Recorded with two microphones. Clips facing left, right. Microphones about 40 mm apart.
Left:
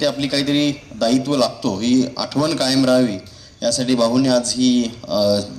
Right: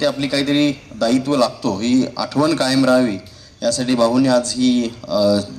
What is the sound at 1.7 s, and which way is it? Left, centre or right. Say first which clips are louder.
Speech: left 1 dB; right.